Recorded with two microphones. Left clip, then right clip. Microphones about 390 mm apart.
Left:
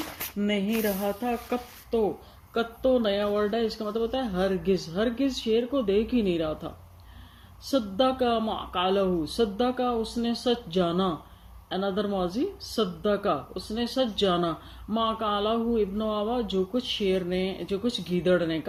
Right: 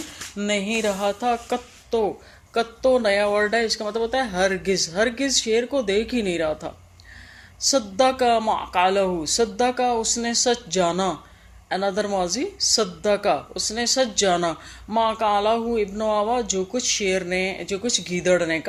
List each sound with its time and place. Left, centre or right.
0.4 s music: right
2.6 s speech: right
7.7 s speech: right